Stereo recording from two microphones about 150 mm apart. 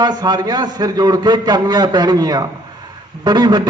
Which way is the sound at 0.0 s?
25° right (ahead or behind).